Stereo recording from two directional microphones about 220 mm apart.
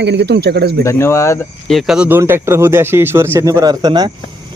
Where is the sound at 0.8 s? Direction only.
10° left (ahead or behind).